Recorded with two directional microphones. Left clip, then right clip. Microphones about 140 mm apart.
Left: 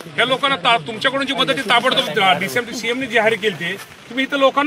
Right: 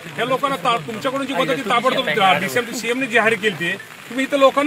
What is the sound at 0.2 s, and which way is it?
Speech, 45° left (ahead or behind).